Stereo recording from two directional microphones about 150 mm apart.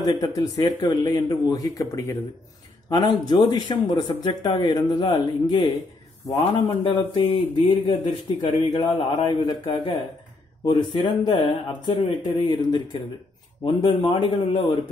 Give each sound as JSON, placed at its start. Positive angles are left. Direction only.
{"t": 0.0, "sound": "a man's voice", "side_deg": 25}